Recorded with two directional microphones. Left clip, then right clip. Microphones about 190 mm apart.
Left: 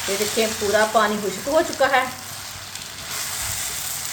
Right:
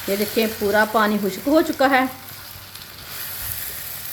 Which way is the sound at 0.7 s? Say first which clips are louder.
Even; 50° right (ahead or behind).